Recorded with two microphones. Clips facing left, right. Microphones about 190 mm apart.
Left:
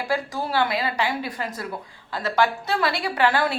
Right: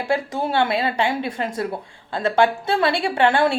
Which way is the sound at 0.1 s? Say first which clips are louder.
Right 4 dB; 25° right (ahead or behind).